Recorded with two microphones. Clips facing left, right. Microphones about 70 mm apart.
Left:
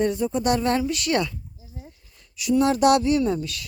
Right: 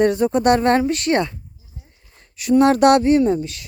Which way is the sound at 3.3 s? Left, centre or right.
Right.